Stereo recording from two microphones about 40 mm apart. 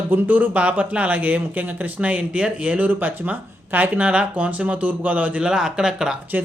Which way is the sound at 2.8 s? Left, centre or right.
Right.